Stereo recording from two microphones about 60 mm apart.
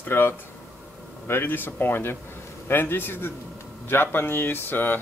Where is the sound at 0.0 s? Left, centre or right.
Left.